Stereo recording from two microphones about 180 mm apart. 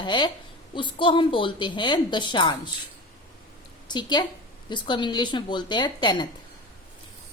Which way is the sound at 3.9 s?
25° left (ahead or behind).